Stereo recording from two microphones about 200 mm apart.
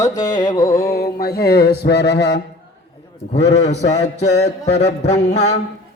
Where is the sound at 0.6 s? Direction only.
45° left (ahead or behind).